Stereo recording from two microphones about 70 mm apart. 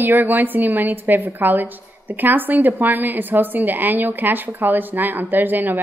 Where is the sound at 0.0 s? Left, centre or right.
Right.